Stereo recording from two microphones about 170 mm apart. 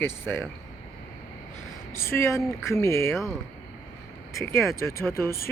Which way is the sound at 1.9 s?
15° left (ahead or behind).